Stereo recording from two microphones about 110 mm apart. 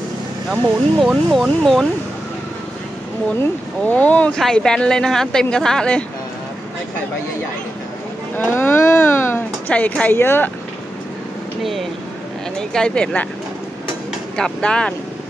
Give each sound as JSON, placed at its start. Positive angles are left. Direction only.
{"t": 0.5, "sound": "a woman's voice", "side_deg": 0}
{"t": 3.8, "sound": "a woman's voice", "side_deg": 15}
{"t": 8.4, "sound": "speech", "side_deg": 20}
{"t": 11.6, "sound": "a woman's voice", "side_deg": 0}
{"t": 14.3, "sound": "speech", "side_deg": 5}